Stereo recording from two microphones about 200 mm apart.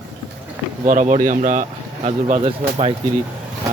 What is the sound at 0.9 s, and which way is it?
Speech, 40° right (ahead or behind).